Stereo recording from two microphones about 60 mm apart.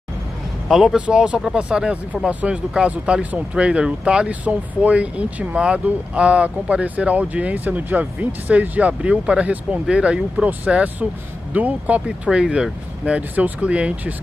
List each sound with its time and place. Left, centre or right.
0.7 s a man's voice: centre
0.9 s speech: centre